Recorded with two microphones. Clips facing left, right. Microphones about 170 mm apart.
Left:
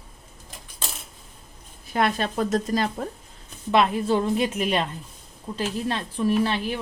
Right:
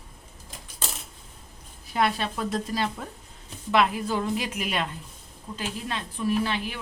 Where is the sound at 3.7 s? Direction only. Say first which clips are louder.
Left 3 dB; 25° left (ahead or behind).